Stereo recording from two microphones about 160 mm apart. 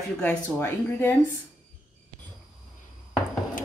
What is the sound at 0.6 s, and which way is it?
Speech, 15° left (ahead or behind).